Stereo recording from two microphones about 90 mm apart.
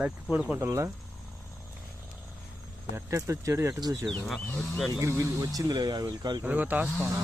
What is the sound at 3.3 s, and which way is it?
Speech, 35° right (ahead or behind).